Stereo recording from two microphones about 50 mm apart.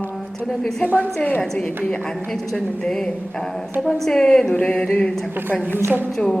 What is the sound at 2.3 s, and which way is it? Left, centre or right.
A woman's voice, centre.